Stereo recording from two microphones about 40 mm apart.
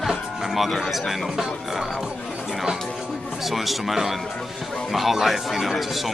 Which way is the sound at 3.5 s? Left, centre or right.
Centre.